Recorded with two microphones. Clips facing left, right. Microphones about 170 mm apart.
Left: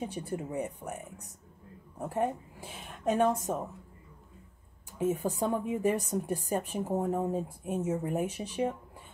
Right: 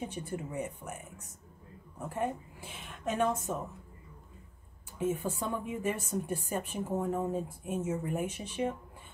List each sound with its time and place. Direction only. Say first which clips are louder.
0.0 s speech: left 2 dB; 35° left (ahead or behind)
4.9 s speech: left 2 dB; 35° left (ahead or behind)